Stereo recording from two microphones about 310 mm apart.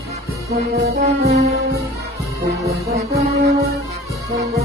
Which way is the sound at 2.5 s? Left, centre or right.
Centre.